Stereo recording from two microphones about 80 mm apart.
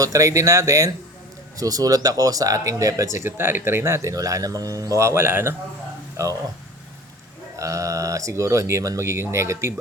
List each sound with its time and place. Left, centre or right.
0.0 s speech: right
7.5 s speech: right